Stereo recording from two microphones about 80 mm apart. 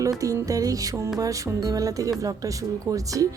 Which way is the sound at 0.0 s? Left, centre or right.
Right.